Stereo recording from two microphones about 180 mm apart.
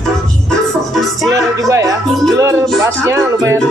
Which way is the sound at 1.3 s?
20° right (ahead or behind).